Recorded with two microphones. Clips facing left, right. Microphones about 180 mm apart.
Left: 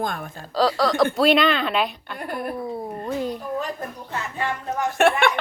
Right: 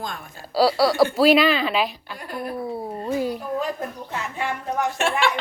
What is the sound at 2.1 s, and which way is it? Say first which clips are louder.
Speech: left 3 dB; 55° left (ahead or behind).